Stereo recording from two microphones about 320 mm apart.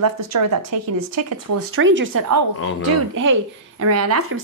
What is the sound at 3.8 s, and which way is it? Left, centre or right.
Speech, right.